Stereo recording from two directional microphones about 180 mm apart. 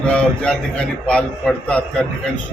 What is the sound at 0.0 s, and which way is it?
A man's voice, 5° left (ahead or behind).